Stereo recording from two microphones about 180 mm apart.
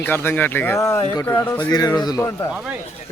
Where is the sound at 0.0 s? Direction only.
10° left (ahead or behind).